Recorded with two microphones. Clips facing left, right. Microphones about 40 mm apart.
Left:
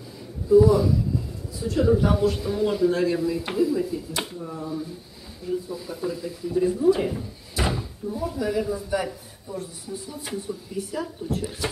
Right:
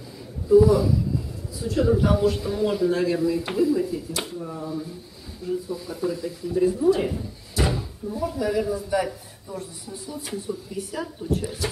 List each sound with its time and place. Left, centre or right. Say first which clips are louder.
0.5 s speech: even; centre
7.2 s slam: right 2 dB; centre
8.1 s speech: right 1 dB; centre
11.2 s speech: right 5 dB; centre
11.6 s speech: left 1 dB; left